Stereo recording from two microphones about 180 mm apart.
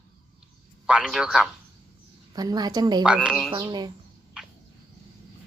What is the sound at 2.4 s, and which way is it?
Speech, 20° right (ahead or behind).